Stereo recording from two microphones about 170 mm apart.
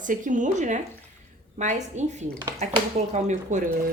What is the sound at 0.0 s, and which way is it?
A woman's voice, 50° right (ahead or behind).